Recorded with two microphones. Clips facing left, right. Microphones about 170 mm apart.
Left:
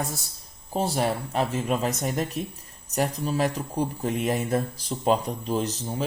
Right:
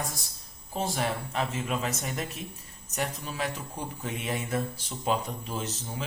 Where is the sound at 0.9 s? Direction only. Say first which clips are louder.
Left 6 dB; 40° left (ahead or behind).